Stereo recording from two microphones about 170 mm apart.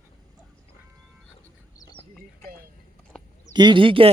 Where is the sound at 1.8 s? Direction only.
25° left (ahead or behind).